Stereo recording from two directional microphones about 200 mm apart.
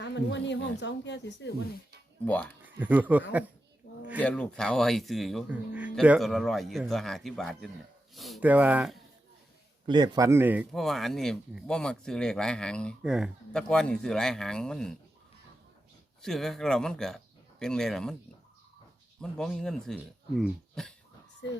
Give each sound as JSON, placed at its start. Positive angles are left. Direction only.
{"t": 0.0, "sound": "speech", "side_deg": 60}
{"t": 2.2, "sound": "speech", "side_deg": 10}
{"t": 2.6, "sound": "speech", "side_deg": -10}
{"t": 4.2, "sound": "speech", "side_deg": 5}
{"t": 9.8, "sound": "speech", "side_deg": -20}
{"t": 16.2, "sound": "speech", "side_deg": 0}
{"t": 19.2, "sound": "speech", "side_deg": 0}